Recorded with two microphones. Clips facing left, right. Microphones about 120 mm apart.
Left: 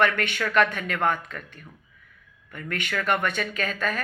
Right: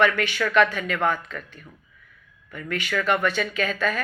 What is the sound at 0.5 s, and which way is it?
Speech, 45° left (ahead or behind).